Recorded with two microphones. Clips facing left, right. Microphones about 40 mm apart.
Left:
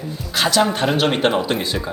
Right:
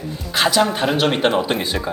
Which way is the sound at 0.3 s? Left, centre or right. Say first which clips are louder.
Right 1 dB; centre.